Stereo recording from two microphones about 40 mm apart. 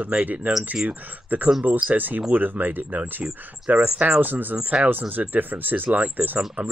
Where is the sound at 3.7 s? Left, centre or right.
Right.